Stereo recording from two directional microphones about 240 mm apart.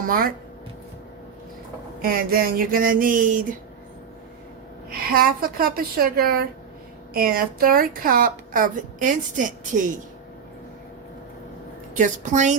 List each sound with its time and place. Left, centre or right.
0.0 s speech: right
2.0 s a woman's voice: right
4.9 s a woman's voice: right
11.9 s a woman's voice: right